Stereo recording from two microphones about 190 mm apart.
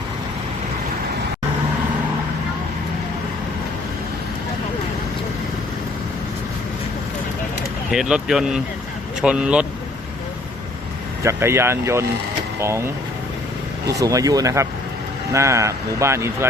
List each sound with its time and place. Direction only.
7.9 s speech: 5° right (ahead or behind)
11.2 s speech: 15° right (ahead or behind)
13.8 s speech: 20° right (ahead or behind)